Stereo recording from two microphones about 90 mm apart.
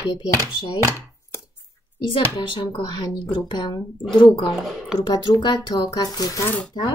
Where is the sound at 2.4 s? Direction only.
65° left (ahead or behind).